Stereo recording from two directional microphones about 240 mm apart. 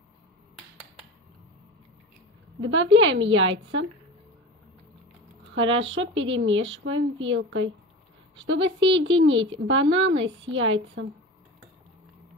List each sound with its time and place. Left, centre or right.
2.6 s a woman's voice: right
5.5 s a woman's voice: right